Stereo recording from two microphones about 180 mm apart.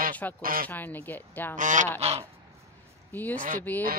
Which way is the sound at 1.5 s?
45° right (ahead or behind).